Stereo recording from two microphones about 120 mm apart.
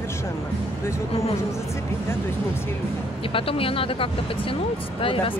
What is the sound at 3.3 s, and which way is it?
Speech, 50° left (ahead or behind).